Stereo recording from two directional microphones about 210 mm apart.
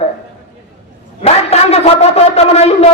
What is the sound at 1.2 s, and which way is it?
A man's voice, 30° left (ahead or behind).